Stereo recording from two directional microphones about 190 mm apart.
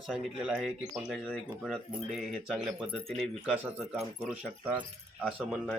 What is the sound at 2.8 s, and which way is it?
Speech, 30° right (ahead or behind).